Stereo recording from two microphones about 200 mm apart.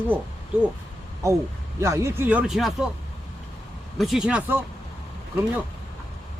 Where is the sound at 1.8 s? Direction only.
15° right (ahead or behind).